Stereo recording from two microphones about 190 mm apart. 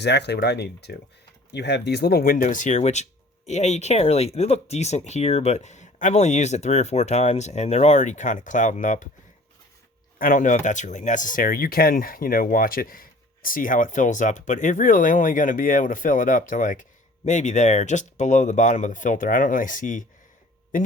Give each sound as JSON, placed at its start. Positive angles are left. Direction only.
{"t": 0.0, "sound": "speech", "side_deg": 65}
{"t": 10.2, "sound": "speech", "side_deg": 45}